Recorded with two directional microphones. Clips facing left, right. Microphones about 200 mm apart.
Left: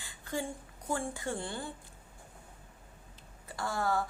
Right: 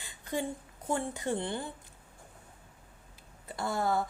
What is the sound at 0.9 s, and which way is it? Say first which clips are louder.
Speech: right 3 dB; 20° right (ahead or behind).